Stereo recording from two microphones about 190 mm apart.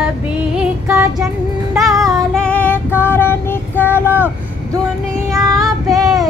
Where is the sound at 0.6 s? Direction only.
15° right (ahead or behind).